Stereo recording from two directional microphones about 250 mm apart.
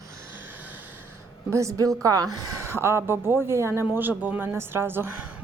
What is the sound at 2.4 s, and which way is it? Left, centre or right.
Speech, right.